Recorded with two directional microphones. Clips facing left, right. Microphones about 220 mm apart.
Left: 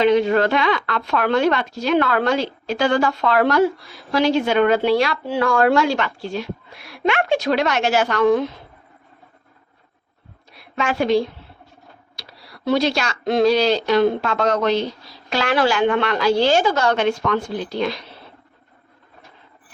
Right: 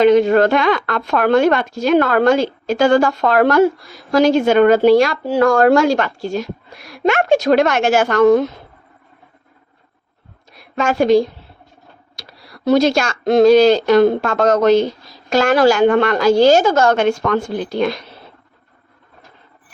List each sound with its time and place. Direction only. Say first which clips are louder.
0.0 s a woman's voice: right 5 dB; 45° right (ahead or behind)
10.5 s a woman's voice: right 5 dB; 45° right (ahead or behind)